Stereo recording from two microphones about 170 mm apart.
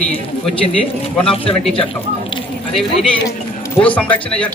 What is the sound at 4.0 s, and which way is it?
Speech, 5° left (ahead or behind).